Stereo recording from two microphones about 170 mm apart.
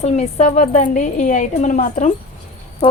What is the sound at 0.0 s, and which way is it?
A woman's voice, 40° left (ahead or behind).